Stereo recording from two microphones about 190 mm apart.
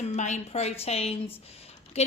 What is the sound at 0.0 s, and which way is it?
A woman's voice, 35° left (ahead or behind).